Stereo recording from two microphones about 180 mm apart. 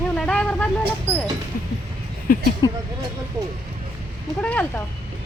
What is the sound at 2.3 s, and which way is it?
Speech, 50° left (ahead or behind).